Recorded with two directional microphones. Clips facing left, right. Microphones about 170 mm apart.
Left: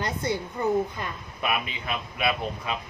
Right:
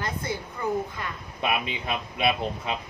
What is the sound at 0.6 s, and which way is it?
Speech, 25° left (ahead or behind).